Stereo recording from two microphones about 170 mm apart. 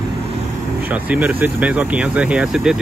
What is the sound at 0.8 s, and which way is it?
Speech, 10° right (ahead or behind).